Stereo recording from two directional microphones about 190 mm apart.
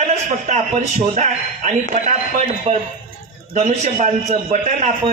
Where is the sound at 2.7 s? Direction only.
35° right (ahead or behind).